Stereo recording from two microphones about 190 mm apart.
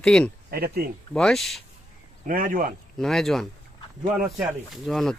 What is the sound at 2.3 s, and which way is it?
Speech, 50° right (ahead or behind).